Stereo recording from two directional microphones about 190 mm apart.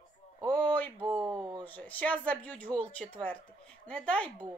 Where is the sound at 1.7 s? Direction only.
10° left (ahead or behind).